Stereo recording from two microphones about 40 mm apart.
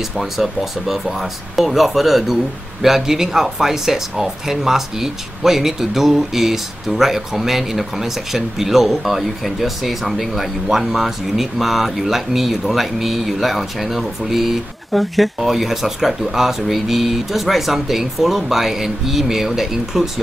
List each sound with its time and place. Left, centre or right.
0.2 s speech: centre